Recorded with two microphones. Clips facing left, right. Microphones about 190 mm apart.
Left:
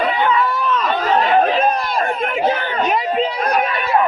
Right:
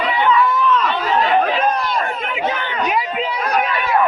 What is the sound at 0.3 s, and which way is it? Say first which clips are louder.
Chatter: right 2 dB; 35° left (ahead or behind).